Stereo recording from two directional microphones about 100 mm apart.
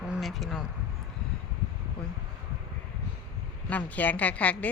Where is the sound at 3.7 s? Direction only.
15° left (ahead or behind).